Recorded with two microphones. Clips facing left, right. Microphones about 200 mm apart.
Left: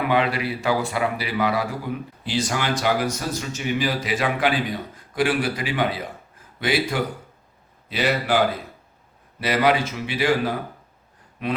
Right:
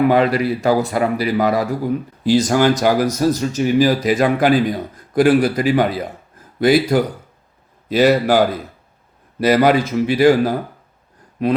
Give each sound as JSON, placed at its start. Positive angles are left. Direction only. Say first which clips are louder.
{"t": 0.1, "sound": "a man's voice", "louder": "right 7 dB", "side_deg": -40}
{"t": 9.4, "sound": "speech", "louder": "right 7 dB", "side_deg": -40}